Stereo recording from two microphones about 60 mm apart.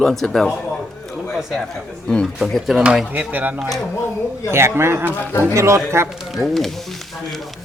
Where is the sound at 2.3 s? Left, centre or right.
Centre.